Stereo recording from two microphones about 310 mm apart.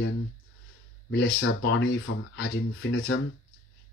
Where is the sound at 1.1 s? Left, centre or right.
Left.